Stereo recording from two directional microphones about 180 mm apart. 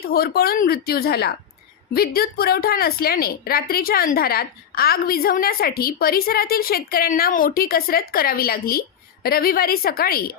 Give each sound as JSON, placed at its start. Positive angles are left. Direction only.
{"t": 0.0, "sound": "a woman's voice", "side_deg": 60}